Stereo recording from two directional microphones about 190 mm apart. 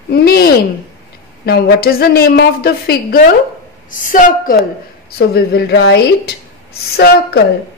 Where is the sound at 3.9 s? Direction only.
45° left (ahead or behind).